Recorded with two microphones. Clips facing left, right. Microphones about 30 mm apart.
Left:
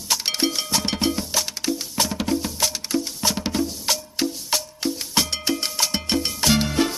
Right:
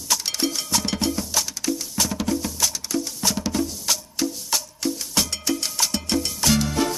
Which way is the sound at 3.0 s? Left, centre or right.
Left.